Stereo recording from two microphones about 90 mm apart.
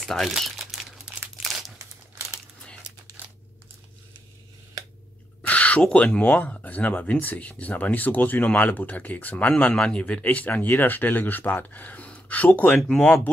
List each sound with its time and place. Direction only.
0.0 s crumpling: centre (ahead or behind)
1.8 s crumpling: 35° right (ahead or behind)
5.5 s speech: 15° left (ahead or behind)
12.8 s speech: 5° left (ahead or behind)